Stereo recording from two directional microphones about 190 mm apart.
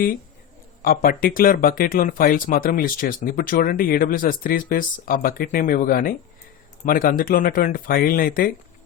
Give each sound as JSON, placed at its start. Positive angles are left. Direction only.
{"t": 0.8, "sound": "speech", "side_deg": 45}